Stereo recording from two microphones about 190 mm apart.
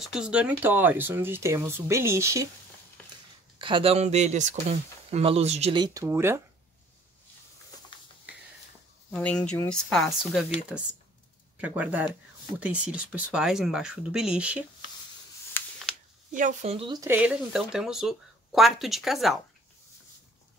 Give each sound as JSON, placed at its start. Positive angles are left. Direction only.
{"t": 0.0, "sound": "speech", "side_deg": -5}
{"t": 3.5, "sound": "speech", "side_deg": -25}
{"t": 9.1, "sound": "speech", "side_deg": 5}
{"t": 15.6, "sound": "a sound", "side_deg": 10}
{"t": 16.3, "sound": "speech", "side_deg": -35}
{"t": 17.1, "sound": "speech", "side_deg": -5}